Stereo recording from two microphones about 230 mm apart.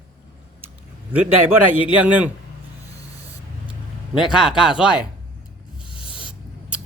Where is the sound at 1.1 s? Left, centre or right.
Centre.